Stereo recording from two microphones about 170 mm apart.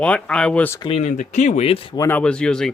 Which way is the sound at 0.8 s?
35° left (ahead or behind).